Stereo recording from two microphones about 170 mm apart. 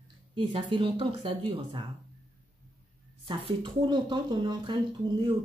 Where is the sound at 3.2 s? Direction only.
30° right (ahead or behind).